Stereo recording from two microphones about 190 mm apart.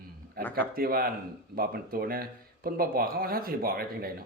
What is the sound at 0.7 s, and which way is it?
Speech, 50° right (ahead or behind).